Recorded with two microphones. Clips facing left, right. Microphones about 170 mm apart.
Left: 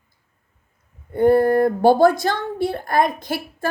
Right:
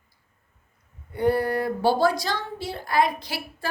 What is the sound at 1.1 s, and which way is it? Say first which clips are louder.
A woman's voice: left 8 dB; 50° left (ahead or behind).